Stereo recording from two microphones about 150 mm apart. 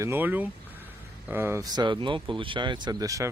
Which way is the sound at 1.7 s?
30° right (ahead or behind).